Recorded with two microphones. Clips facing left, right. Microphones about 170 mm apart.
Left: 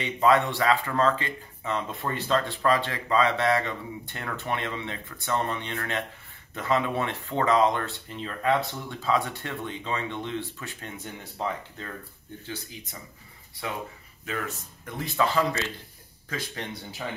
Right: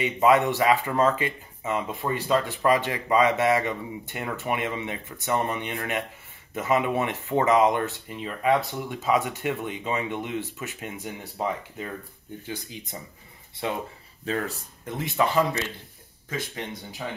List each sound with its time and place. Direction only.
0.0 s speech: 10° right (ahead or behind)